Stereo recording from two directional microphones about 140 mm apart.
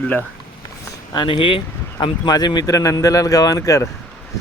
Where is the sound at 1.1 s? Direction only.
35° left (ahead or behind).